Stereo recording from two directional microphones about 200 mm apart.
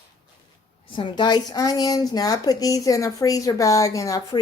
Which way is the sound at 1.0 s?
25° left (ahead or behind).